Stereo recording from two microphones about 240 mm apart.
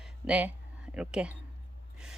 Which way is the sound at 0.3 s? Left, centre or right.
Centre.